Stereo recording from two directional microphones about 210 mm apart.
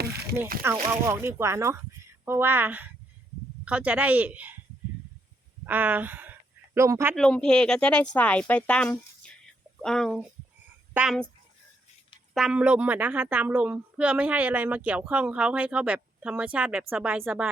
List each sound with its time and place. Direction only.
0.0 s a sound: 50° right (ahead or behind)
0.9 s a woman's voice: 10° right (ahead or behind)
5.6 s a woman's voice: 10° right (ahead or behind)
7.2 s speech: 5° left (ahead or behind)
12.3 s a woman's voice: 5° right (ahead or behind)